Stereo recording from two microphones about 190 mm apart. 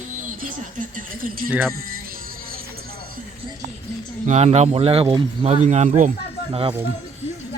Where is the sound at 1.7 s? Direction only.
50° right (ahead or behind).